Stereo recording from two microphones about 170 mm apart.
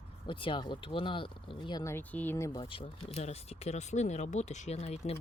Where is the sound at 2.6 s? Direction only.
35° left (ahead or behind).